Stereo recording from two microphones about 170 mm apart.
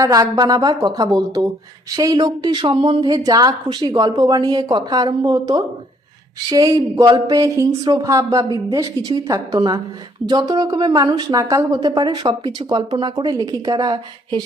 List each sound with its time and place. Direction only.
0.0 s a woman's voice: 20° right (ahead or behind)